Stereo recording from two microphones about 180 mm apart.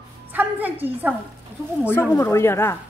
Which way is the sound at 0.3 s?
10° right (ahead or behind).